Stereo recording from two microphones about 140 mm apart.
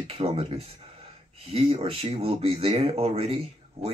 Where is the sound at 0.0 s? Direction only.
45° right (ahead or behind).